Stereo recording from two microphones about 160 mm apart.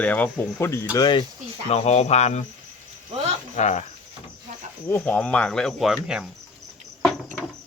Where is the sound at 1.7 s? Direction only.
45° left (ahead or behind).